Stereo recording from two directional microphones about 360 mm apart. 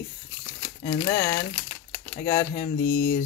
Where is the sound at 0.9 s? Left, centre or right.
Centre.